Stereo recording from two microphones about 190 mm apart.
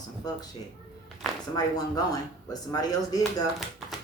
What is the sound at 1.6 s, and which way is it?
Speech, 20° left (ahead or behind).